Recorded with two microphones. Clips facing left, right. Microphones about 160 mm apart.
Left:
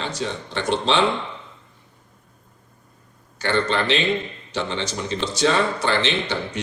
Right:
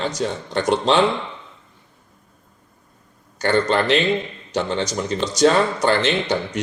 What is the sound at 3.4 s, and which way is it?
A man's voice, 45° right (ahead or behind).